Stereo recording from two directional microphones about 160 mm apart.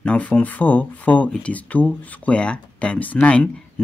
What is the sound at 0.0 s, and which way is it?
Speech, 10° left (ahead or behind).